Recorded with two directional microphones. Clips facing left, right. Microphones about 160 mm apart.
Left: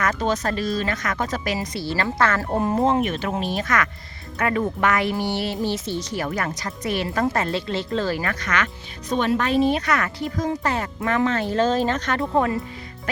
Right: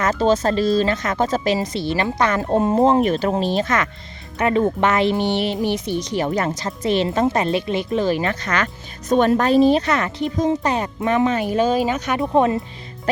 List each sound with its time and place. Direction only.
0.0 s speech: 30° right (ahead or behind)